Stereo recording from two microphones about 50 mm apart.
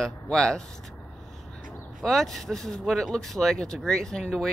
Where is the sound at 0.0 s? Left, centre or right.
Centre.